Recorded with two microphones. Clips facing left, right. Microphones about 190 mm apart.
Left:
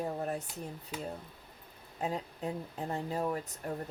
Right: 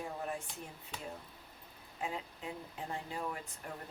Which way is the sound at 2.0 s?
40° left (ahead or behind).